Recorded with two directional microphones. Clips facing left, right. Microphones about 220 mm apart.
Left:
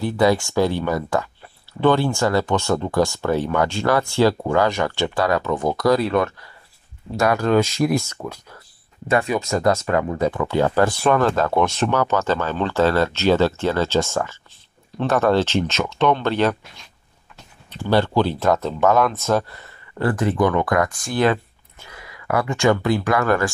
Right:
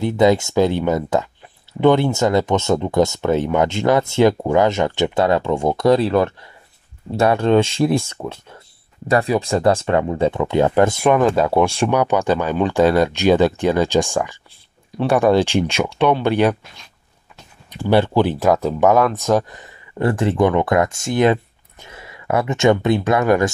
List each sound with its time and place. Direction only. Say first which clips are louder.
0.0 s speech: right 3 dB; 20° right (ahead or behind)
17.6 s speech: right 3 dB; 15° right (ahead or behind)